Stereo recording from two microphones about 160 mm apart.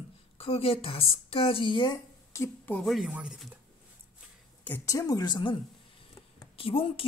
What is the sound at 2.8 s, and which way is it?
Speech, centre (ahead or behind).